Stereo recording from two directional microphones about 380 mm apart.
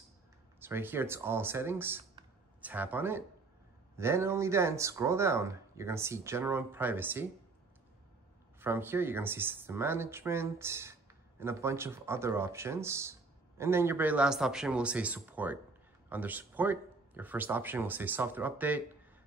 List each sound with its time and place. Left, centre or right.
0.6 s speech: centre
8.5 s speech: centre